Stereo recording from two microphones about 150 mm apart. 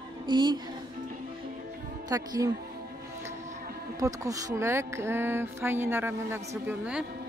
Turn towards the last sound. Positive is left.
turn(degrees=-5)  # may be behind; listen again after turning